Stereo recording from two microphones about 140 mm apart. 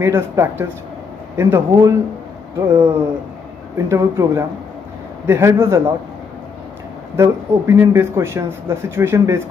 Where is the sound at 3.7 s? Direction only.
20° right (ahead or behind).